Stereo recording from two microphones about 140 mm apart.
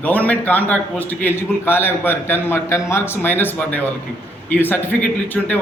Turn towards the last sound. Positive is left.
turn(degrees=10)  # may be behind; listen again after turning